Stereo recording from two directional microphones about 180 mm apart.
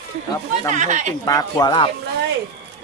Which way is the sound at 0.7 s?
45° right (ahead or behind).